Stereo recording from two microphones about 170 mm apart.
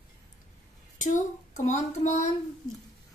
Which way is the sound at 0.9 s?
45° left (ahead or behind).